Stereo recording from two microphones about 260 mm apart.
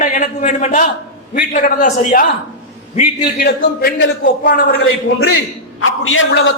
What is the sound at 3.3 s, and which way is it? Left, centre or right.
A man's voice, left.